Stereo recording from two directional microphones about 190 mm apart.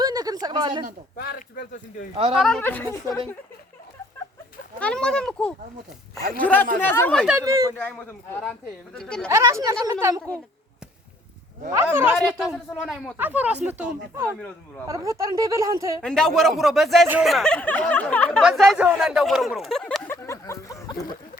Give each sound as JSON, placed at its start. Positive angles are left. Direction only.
{"t": 0.0, "sound": "a sound", "side_deg": -20}
{"t": 1.1, "sound": "speech", "side_deg": 55}
{"t": 2.1, "sound": "speech", "side_deg": -30}
{"t": 2.4, "sound": "a woman's voice", "side_deg": 5}
{"t": 4.8, "sound": "a woman's voice", "side_deg": 5}
{"t": 7.3, "sound": "speech", "side_deg": -15}
{"t": 7.8, "sound": "a woman's voice", "side_deg": 10}
{"t": 9.3, "sound": "speech", "side_deg": -15}
{"t": 11.7, "sound": "speech", "side_deg": -10}
{"t": 12.1, "sound": "speech", "side_deg": 0}
{"t": 16.0, "sound": "speech", "side_deg": 5}
{"t": 20.1, "sound": "a sound", "side_deg": 15}